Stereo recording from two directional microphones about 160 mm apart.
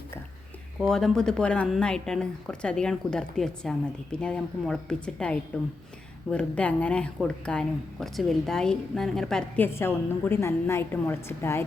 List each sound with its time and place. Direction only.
0.8 s speech: centre (ahead or behind)
9.7 s a woman's voice: 15° left (ahead or behind)